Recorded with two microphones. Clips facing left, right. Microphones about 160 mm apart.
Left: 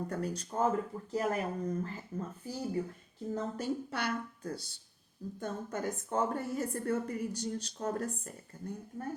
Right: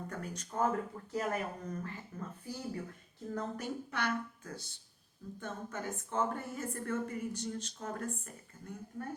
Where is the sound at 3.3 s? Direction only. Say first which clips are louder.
Left 3 dB; 30° left (ahead or behind).